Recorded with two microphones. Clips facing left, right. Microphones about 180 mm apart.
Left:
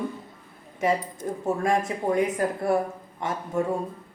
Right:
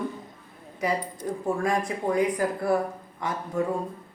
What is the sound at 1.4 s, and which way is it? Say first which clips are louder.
A woman's voice: left 2 dB; 25° left (ahead or behind).